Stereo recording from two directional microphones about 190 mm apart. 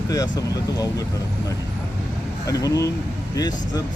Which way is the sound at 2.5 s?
20° left (ahead or behind).